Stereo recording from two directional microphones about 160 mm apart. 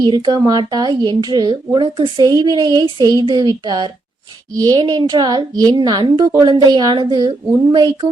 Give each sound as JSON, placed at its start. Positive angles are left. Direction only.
{"t": 0.0, "sound": "speech", "side_deg": -30}